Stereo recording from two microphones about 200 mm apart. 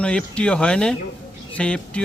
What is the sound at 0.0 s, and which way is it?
A man's voice, 5° left (ahead or behind).